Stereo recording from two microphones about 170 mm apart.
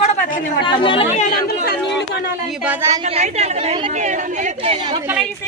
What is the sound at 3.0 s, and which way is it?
A woman's voice, 40° right (ahead or behind).